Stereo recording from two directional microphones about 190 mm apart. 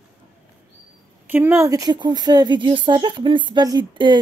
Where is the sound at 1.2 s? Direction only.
10° right (ahead or behind).